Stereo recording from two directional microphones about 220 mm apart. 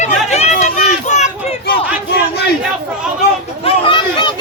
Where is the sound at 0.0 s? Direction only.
30° left (ahead or behind).